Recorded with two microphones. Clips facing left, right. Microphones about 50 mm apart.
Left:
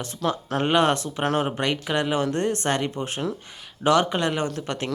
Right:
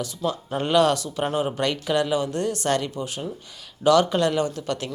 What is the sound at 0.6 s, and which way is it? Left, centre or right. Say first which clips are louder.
Speech: right 1 dB; left.